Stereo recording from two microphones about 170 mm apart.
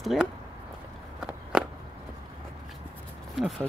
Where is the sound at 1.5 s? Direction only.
5° right (ahead or behind).